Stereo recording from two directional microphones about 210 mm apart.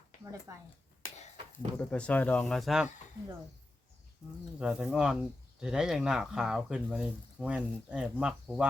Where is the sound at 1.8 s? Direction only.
5° left (ahead or behind).